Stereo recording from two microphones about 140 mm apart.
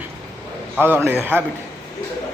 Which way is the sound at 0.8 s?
15° right (ahead or behind).